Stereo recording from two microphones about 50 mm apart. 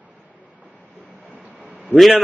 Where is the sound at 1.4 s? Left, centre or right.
Right.